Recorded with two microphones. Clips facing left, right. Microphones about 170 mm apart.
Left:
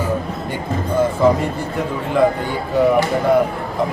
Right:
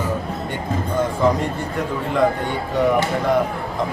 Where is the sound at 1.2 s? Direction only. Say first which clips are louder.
Left 3 dB; 5° left (ahead or behind).